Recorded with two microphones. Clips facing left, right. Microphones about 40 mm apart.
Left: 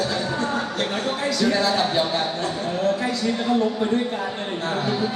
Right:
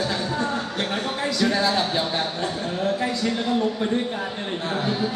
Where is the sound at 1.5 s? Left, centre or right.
Centre.